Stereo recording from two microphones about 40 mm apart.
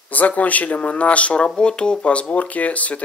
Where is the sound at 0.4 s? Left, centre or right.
Left.